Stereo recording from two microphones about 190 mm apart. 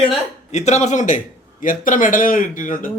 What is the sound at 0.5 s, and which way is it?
A man's voice, 35° left (ahead or behind).